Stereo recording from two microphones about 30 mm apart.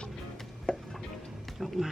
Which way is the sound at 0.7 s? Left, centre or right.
Left.